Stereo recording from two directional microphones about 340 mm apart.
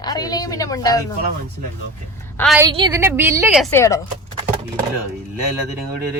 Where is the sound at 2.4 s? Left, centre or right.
Centre.